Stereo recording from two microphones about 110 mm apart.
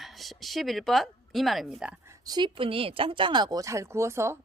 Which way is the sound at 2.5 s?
55° right (ahead or behind).